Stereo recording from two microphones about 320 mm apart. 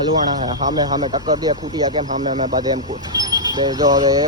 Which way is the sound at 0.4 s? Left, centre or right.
Centre.